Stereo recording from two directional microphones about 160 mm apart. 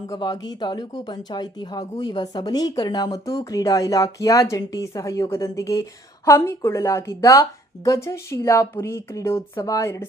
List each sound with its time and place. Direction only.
0.1 s speech: 25° left (ahead or behind)